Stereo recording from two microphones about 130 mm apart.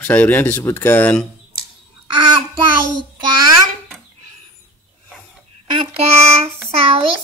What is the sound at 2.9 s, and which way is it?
Child singing, 35° right (ahead or behind).